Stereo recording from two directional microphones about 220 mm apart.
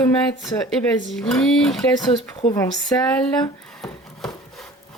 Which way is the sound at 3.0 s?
5° left (ahead or behind).